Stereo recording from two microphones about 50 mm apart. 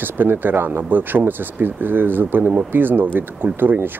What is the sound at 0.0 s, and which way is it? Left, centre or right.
Speech, right.